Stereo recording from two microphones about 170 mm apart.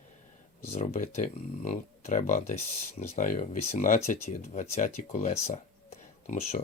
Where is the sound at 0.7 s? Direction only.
45° left (ahead or behind).